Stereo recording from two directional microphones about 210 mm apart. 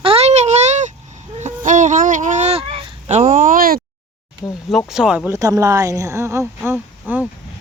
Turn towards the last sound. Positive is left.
turn(degrees=-10)  # may be behind; listen again after turning